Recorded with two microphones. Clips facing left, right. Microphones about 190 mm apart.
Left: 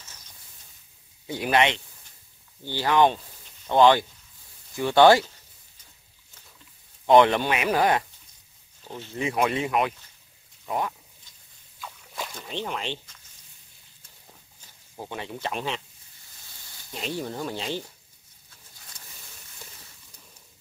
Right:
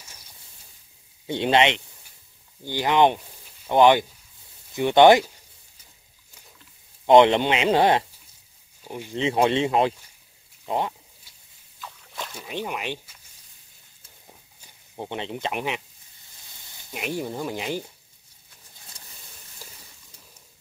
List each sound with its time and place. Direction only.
0.0 s a sound: 10° right (ahead or behind)
1.2 s speech: 25° right (ahead or behind)
7.1 s speech: 20° right (ahead or behind)
8.8 s speech: 15° right (ahead or behind)
9.1 s speech: 25° right (ahead or behind)
11.3 s a sound: 10° right (ahead or behind)
11.8 s a sound: 5° left (ahead or behind)
15.0 s speech: 20° right (ahead or behind)
16.9 s speech: 15° right (ahead or behind)